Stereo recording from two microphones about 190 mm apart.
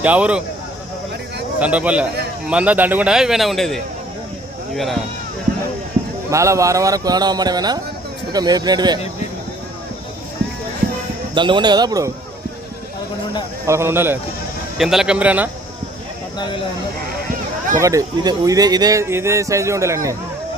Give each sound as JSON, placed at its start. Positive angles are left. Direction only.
{"t": 0.0, "sound": "speech", "side_deg": -5}
{"t": 1.5, "sound": "a man's voice", "side_deg": -5}
{"t": 6.3, "sound": "speech", "side_deg": -15}
{"t": 11.3, "sound": "speech", "side_deg": -25}
{"t": 13.7, "sound": "a man's voice", "side_deg": -15}
{"t": 17.7, "sound": "speech", "side_deg": -15}